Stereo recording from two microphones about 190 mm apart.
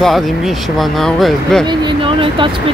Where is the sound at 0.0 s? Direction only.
Centre (ahead or behind).